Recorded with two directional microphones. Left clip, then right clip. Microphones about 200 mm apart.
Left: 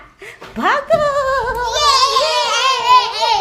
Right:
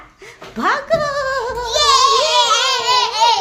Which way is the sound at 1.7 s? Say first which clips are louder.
Right 1 dB; 15° right (ahead or behind).